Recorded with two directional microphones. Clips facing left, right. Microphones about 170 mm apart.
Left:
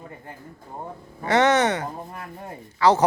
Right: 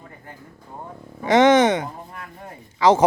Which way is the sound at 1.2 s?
15° right (ahead or behind).